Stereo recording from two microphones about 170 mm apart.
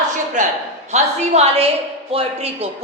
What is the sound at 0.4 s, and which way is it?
A man's voice, 45° right (ahead or behind).